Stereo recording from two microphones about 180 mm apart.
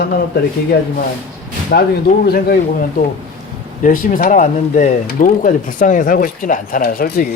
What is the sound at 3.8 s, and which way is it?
A woman's voice, 50° left (ahead or behind).